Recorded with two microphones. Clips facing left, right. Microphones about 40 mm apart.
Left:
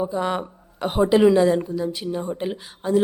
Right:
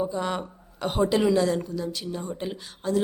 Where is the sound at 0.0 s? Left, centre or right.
Centre.